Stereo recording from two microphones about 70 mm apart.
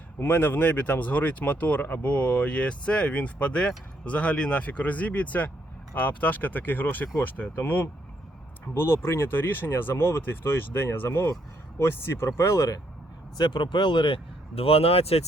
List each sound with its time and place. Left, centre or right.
0.2 s speech: left
12.4 s speech: left
13.3 s speech: left